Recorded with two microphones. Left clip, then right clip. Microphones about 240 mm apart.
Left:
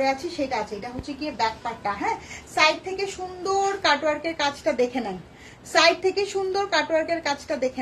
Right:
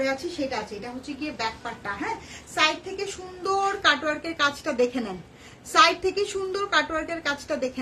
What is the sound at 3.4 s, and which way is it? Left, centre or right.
A woman's voice, centre.